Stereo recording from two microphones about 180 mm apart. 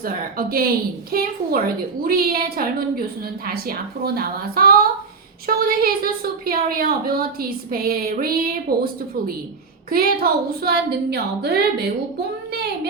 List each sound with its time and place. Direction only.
0.0 s a woman's voice: 55° right (ahead or behind)